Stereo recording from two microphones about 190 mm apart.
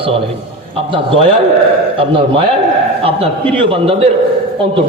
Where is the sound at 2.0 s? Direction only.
25° right (ahead or behind).